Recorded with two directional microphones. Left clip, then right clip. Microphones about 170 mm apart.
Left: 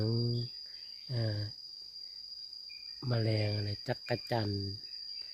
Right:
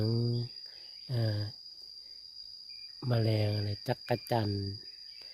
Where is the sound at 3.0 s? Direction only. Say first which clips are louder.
Right 2 dB; 30° right (ahead or behind).